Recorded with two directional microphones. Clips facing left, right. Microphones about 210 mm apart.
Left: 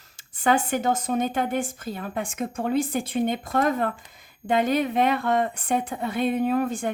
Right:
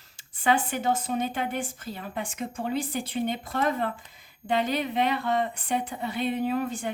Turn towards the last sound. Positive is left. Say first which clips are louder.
# left 4 dB
turn(degrees=45)  # may be behind; listen again after turning